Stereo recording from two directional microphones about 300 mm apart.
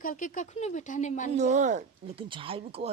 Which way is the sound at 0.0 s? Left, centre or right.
Left.